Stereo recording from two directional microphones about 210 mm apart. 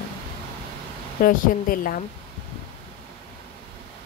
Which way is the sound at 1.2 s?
45° left (ahead or behind).